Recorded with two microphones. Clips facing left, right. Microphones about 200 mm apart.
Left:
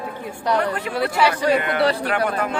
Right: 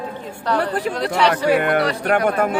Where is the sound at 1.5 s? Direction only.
55° right (ahead or behind).